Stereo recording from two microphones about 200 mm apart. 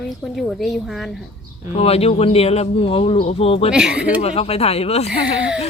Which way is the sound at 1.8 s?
30° left (ahead or behind).